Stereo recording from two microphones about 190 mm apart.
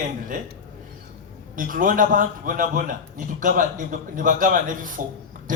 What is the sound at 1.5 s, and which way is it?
A man's voice, 45° right (ahead or behind).